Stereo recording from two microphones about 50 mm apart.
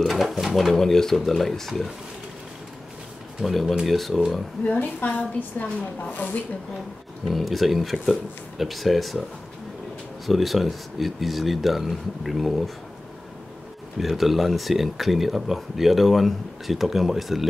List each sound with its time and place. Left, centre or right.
0.0 s speech: centre
3.3 s speech: centre
4.6 s a woman's voice: left
7.2 s speech: centre
10.2 s speech: centre
13.9 s speech: centre